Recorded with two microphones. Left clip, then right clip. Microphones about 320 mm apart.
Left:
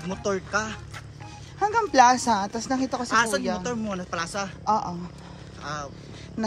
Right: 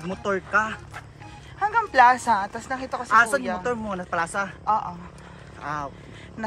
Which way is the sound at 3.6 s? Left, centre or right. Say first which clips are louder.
Right 3 dB; centre.